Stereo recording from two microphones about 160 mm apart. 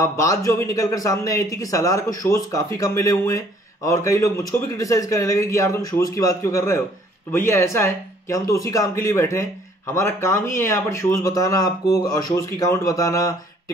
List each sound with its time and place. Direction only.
0.0 s speech: 20° left (ahead or behind)